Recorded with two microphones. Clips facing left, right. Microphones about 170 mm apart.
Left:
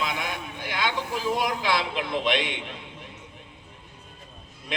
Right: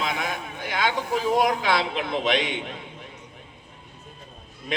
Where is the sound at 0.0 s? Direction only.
45° right (ahead or behind).